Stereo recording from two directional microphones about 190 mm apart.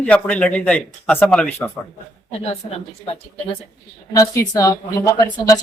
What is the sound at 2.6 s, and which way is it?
Speech, 30° left (ahead or behind).